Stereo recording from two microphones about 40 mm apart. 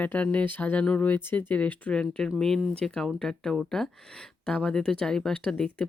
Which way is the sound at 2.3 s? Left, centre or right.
Centre.